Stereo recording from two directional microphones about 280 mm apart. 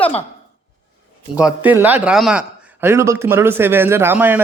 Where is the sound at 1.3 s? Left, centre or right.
Centre.